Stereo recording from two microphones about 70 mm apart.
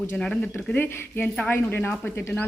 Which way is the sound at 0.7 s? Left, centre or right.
Left.